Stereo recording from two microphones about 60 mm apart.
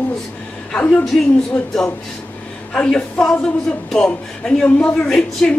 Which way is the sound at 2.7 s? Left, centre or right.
Centre.